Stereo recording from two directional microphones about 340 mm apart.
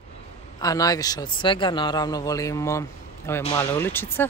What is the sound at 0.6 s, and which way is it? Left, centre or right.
A man's voice, centre.